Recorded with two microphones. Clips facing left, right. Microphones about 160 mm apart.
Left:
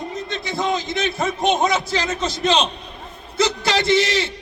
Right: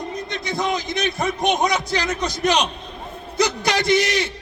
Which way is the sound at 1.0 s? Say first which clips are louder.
Even; 25° left (ahead or behind).